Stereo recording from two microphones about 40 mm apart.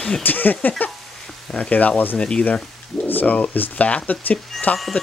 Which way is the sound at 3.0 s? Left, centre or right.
Left.